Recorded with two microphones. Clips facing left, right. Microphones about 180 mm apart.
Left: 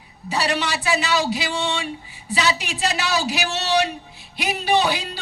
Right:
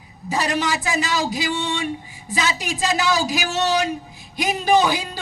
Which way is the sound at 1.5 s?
75° left (ahead or behind).